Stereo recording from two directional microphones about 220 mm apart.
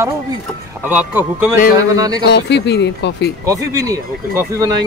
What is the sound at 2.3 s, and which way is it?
Speech, 50° left (ahead or behind).